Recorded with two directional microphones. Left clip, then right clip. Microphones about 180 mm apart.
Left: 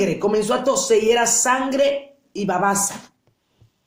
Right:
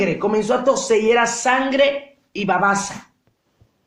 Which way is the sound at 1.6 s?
5° right (ahead or behind).